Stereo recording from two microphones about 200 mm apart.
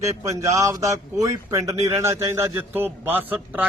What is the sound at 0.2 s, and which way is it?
A man's voice, 15° right (ahead or behind).